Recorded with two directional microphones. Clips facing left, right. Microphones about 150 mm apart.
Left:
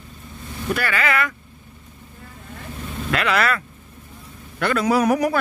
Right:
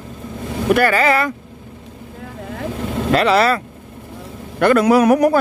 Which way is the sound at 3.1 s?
30° right (ahead or behind).